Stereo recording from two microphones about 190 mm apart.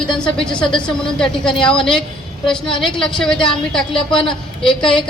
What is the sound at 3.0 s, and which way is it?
A woman's voice, 5° left (ahead or behind).